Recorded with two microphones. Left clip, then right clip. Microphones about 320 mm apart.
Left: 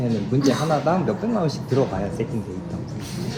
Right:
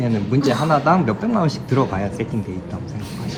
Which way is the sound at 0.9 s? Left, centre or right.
Right.